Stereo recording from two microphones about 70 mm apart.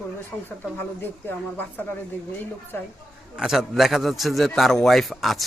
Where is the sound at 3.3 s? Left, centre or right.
Centre.